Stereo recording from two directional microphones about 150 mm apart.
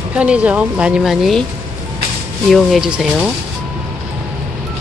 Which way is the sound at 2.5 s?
Centre (ahead or behind).